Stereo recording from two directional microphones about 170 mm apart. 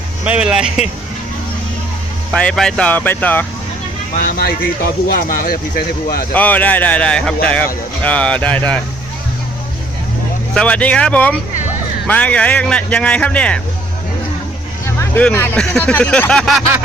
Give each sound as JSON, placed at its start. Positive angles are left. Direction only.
{"t": 0.3, "sound": "speech", "side_deg": -5}
{"t": 2.3, "sound": "speech", "side_deg": 5}
{"t": 4.1, "sound": "speech", "side_deg": 55}
{"t": 6.3, "sound": "speech", "side_deg": 10}
{"t": 10.5, "sound": "speech", "side_deg": 5}
{"t": 14.8, "sound": "speech", "side_deg": 10}